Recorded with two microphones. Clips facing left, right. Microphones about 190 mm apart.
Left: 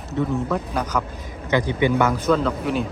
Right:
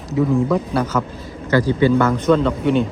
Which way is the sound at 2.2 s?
Centre (ahead or behind).